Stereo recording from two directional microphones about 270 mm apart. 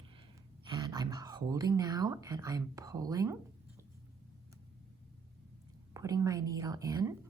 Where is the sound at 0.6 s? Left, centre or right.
Centre.